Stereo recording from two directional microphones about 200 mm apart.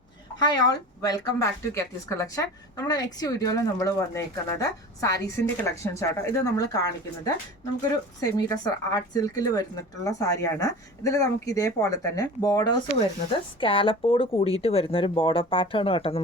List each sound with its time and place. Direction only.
0.3 s speech: 20° left (ahead or behind)